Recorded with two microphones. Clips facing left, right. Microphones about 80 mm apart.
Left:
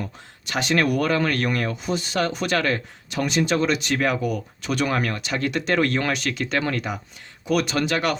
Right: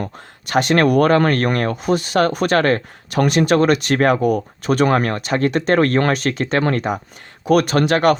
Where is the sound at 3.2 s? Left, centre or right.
Right.